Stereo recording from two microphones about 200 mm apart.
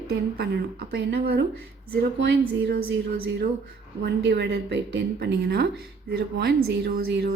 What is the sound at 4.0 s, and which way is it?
A woman's voice, 55° right (ahead or behind).